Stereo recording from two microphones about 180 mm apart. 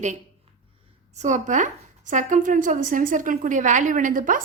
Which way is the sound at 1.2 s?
45° right (ahead or behind).